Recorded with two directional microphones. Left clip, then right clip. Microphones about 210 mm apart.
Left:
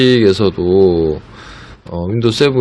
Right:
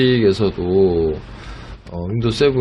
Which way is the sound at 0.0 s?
50° left (ahead or behind).